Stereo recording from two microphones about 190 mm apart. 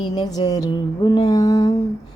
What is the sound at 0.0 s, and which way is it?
A woman's voice, 25° left (ahead or behind).